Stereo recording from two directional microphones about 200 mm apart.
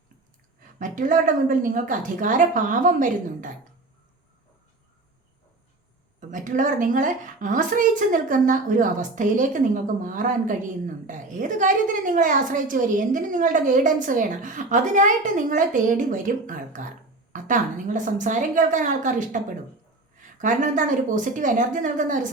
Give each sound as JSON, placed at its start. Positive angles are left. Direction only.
{"t": 0.8, "sound": "a woman's voice", "side_deg": -40}
{"t": 6.1, "sound": "a woman's voice", "side_deg": -40}
{"t": 20.4, "sound": "a woman's voice", "side_deg": -40}